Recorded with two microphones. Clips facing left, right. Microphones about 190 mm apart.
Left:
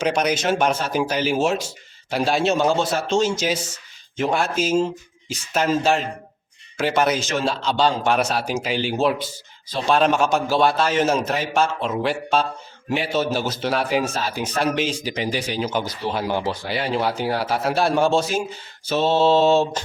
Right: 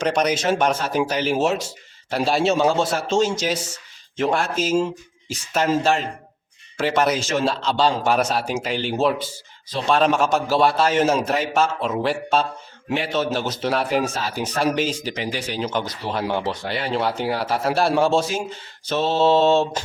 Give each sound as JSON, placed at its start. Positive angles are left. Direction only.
{"t": 0.0, "sound": "speech", "side_deg": 5}
{"t": 15.1, "sound": "speech", "side_deg": 15}
{"t": 15.6, "sound": "speech", "side_deg": 5}